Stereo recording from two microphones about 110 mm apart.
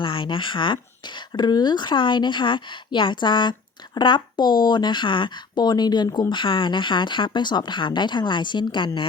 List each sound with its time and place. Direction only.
0.0 s speech: 50° left (ahead or behind)